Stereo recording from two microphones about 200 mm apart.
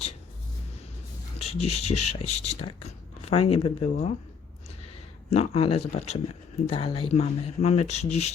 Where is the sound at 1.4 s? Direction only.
30° left (ahead or behind).